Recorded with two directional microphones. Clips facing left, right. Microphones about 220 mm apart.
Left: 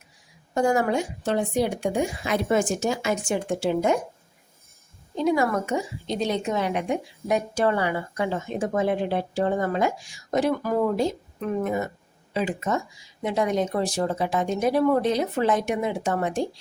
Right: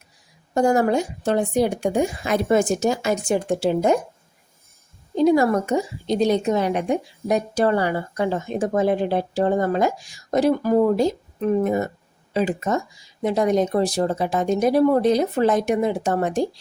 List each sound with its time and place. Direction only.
0.5 s a woman's voice: 40° right (ahead or behind)
5.1 s a woman's voice: 35° right (ahead or behind)